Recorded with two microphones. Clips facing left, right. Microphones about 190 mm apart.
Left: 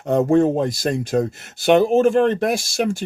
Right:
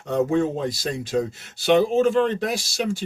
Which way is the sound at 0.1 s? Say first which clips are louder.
Left 5 dB; 50° left (ahead or behind).